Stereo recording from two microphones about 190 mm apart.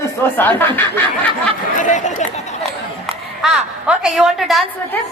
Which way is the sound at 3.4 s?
5° right (ahead or behind).